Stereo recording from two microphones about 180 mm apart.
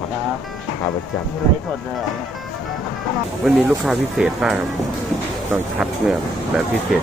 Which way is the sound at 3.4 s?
Centre (ahead or behind).